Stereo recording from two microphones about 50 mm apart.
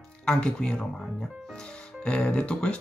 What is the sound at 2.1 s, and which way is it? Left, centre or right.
Speech, centre.